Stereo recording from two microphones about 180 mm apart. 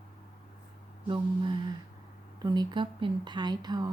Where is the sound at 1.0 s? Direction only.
25° right (ahead or behind).